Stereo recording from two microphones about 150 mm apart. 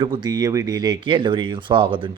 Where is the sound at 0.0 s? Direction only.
30° right (ahead or behind).